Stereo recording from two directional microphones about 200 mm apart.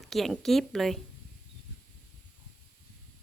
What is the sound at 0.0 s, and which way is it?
A woman's voice, centre (ahead or behind).